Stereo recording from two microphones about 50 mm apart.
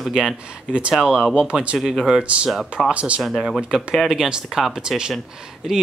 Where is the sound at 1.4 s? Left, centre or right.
Right.